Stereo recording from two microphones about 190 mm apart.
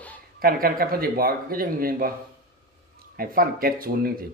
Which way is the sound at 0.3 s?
50° right (ahead or behind).